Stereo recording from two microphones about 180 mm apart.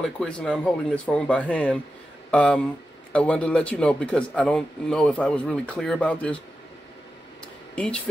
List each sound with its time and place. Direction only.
0.0 s speech: 5° left (ahead or behind)
7.7 s speech: 5° left (ahead or behind)